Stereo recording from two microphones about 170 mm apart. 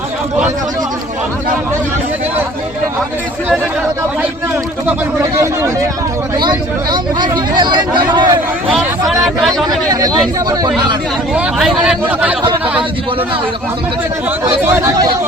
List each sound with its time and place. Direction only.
6.3 s speech: 25° right (ahead or behind)
8.7 s speech: centre (ahead or behind)
9.6 s speech: 20° right (ahead or behind)
11.3 s speech: 5° right (ahead or behind)
14.3 s speech: 15° right (ahead or behind)